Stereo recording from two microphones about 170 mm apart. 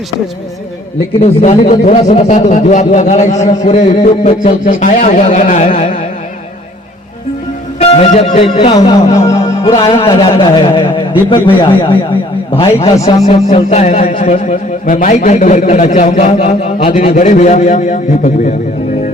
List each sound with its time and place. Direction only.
1.2 s a man's voice: 40° left (ahead or behind)
7.8 s music: 35° left (ahead or behind)
8.8 s a man's voice: 35° left (ahead or behind)
13.0 s a man's voice: 20° left (ahead or behind)
13.2 s a man's voice: 40° left (ahead or behind)